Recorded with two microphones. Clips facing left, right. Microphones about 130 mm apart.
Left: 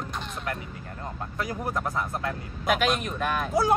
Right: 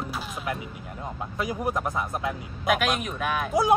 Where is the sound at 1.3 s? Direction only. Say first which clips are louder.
Right 3 dB; 15° right (ahead or behind).